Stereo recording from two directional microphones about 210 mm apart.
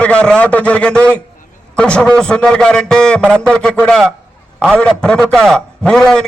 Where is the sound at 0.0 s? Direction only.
5° left (ahead or behind).